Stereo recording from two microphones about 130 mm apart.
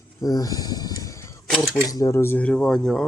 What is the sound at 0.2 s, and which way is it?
Speech, 30° left (ahead or behind).